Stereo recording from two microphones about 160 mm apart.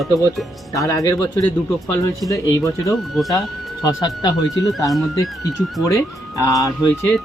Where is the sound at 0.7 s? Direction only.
20° left (ahead or behind).